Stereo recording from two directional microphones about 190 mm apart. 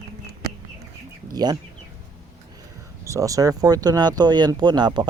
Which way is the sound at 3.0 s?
15° right (ahead or behind).